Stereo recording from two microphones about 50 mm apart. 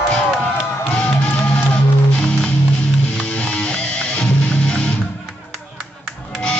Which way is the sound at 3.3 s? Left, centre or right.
Left.